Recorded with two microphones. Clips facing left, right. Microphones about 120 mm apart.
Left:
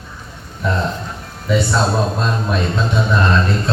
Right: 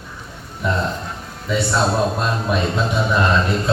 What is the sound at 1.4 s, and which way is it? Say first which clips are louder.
Speech: left 2 dB; centre (ahead or behind).